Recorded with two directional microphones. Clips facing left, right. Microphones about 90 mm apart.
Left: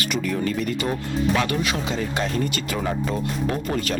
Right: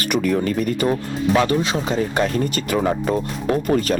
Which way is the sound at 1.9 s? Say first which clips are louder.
Right 5 dB; 40° right (ahead or behind).